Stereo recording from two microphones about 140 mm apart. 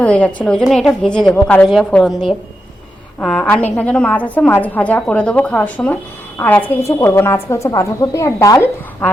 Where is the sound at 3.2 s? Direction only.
10° left (ahead or behind).